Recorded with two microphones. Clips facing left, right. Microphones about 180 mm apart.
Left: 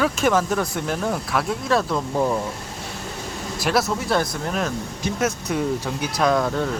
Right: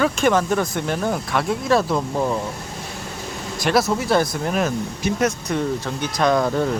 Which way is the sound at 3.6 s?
Centre (ahead or behind).